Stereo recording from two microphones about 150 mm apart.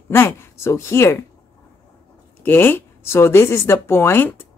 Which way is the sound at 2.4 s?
15° left (ahead or behind).